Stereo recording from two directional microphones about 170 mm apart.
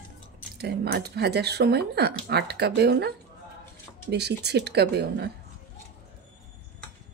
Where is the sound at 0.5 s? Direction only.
70° right (ahead or behind).